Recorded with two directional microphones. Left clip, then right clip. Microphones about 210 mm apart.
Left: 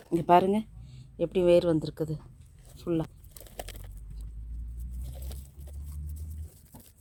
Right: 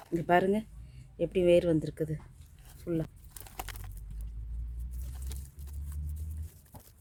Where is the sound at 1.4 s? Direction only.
15° right (ahead or behind).